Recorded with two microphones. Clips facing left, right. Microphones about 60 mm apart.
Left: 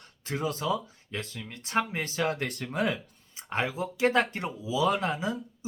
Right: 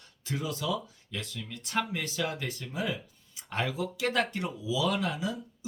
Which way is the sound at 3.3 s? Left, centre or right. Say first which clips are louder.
Left 2 dB; left.